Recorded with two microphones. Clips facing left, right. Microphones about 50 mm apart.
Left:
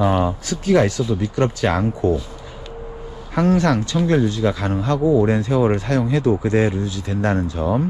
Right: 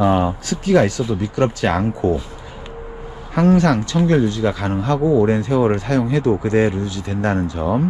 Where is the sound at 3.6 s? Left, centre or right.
Right.